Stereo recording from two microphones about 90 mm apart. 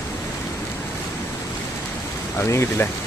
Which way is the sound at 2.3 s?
30° left (ahead or behind).